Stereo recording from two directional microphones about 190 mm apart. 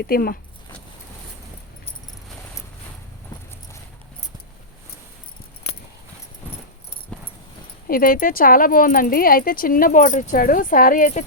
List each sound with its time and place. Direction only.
0.0 s speech: 50° left (ahead or behind)
7.1 s a sound: 5° left (ahead or behind)
7.9 s speech: 50° left (ahead or behind)